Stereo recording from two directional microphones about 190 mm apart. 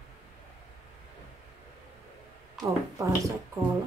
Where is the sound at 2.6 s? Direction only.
15° right (ahead or behind).